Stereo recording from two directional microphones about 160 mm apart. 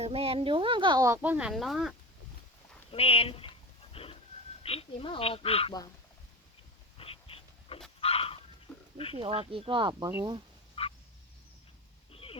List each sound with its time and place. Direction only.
0.0 s speech: 35° right (ahead or behind); by 2.0 s centre (ahead or behind)
2.9 s speech: 35° left (ahead or behind)
3.9 s a sound: 35° left (ahead or behind)
4.6 s speech: 35° left (ahead or behind)
7.0 s a sound: 35° left (ahead or behind)
8.0 s dog: 35° left (ahead or behind)
9.1 s speech: 35° right (ahead or behind)
10.1 s speech: 15° right (ahead or behind)
10.8 s frog: 35° left (ahead or behind)
12.1 s a sound: 35° left (ahead or behind)